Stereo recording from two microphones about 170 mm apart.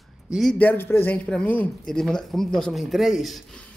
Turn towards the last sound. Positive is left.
turn(degrees=0)  # may be behind; listen again after turning